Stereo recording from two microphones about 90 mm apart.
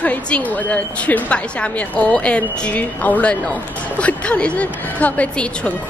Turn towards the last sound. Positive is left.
turn(degrees=15)  # may be behind; listen again after turning